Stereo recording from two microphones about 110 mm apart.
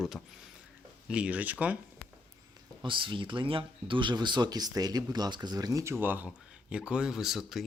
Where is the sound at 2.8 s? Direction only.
50° right (ahead or behind).